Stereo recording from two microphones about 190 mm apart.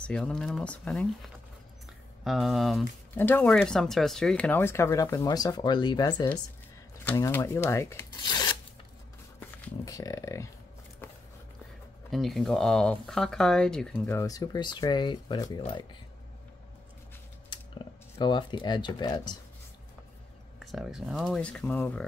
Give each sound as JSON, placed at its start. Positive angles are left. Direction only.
{"t": 0.0, "sound": "speech", "side_deg": 5}
{"t": 9.8, "sound": "speech", "side_deg": 20}
{"t": 12.1, "sound": "speech", "side_deg": 0}
{"t": 17.5, "sound": "speech", "side_deg": 25}
{"t": 20.5, "sound": "speech", "side_deg": 0}